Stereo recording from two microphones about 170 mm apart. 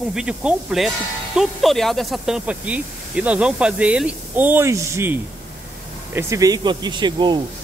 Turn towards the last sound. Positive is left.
turn(degrees=-25)  # may be behind; listen again after turning